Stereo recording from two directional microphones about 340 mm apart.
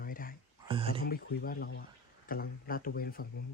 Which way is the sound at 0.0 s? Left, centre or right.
Left.